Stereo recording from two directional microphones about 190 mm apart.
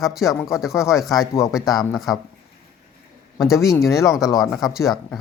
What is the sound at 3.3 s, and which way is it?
Speech, centre (ahead or behind).